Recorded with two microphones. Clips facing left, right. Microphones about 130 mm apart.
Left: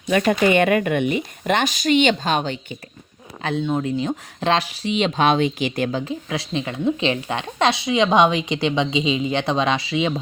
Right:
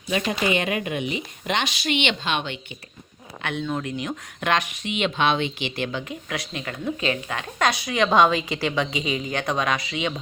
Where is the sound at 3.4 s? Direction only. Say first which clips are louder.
Left 5 dB; 30° left (ahead or behind).